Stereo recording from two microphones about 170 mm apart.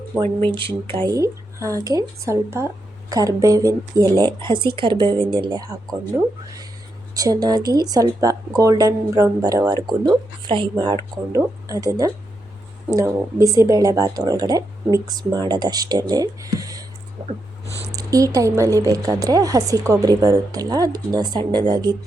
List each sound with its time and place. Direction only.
0.5 s speech: 30° right (ahead or behind)
1.1 s speech: 20° right (ahead or behind)
17.9 s speech: 20° right (ahead or behind)